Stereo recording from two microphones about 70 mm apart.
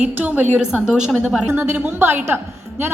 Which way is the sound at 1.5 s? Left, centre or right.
Right.